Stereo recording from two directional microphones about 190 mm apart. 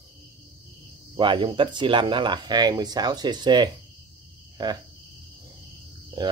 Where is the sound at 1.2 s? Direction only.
25° right (ahead or behind).